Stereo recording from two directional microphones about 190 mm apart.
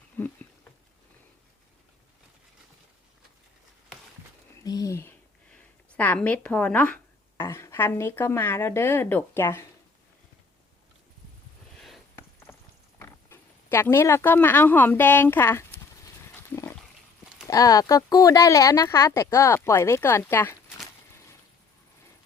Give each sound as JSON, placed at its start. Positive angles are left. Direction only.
{"t": 0.2, "sound": "a sound", "side_deg": 10}
{"t": 4.6, "sound": "a sound", "side_deg": 20}
{"t": 7.4, "sound": "speech", "side_deg": 15}
{"t": 12.5, "sound": "clip-clop", "side_deg": 5}
{"t": 13.0, "sound": "speech", "side_deg": 10}
{"t": 17.5, "sound": "speech", "side_deg": 20}